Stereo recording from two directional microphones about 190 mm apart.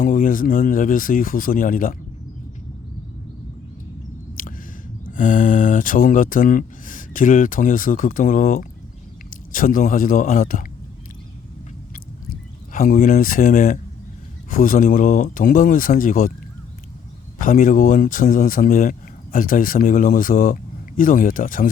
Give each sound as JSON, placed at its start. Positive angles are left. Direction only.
{"t": 0.0, "sound": "speech", "side_deg": 45}
{"t": 4.4, "sound": "a sound", "side_deg": 45}
{"t": 5.1, "sound": "speech", "side_deg": 45}
{"t": 12.7, "sound": "speech", "side_deg": 50}
{"t": 17.3, "sound": "speech", "side_deg": 45}